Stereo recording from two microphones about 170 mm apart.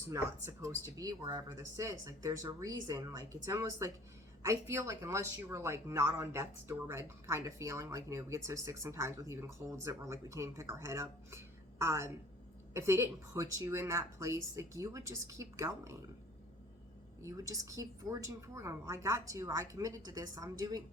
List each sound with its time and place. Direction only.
0.1 s a woman's voice: 15° right (ahead or behind)
17.2 s a woman's voice: 20° right (ahead or behind)